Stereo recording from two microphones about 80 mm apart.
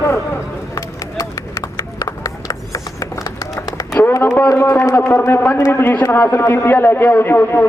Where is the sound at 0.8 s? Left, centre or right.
Left.